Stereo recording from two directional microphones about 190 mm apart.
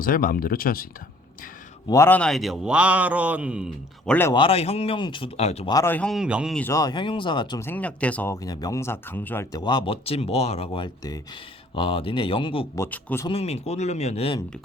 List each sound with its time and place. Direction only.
0.0 s speech: 45° left (ahead or behind)
1.9 s a man's voice: 10° left (ahead or behind); by 4.1 s 5° right (ahead or behind)
4.1 s speech: 10° left (ahead or behind)
4.4 s speech: 30° left (ahead or behind)
5.7 s a man's voice: 10° left (ahead or behind); by 6.6 s 5° right (ahead or behind)
6.6 s speech: 15° left (ahead or behind)
7.6 s speech: 10° left (ahead or behind); by 12.8 s 25° left (ahead or behind)
12.8 s speech: 10° left (ahead or behind)
13.2 s speech: 30° left (ahead or behind)